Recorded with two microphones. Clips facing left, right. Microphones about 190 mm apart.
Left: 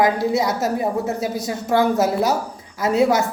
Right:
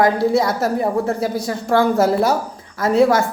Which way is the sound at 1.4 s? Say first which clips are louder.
Right 1 dB; 5° left (ahead or behind).